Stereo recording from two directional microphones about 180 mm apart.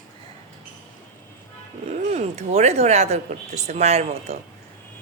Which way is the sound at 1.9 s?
40° right (ahead or behind).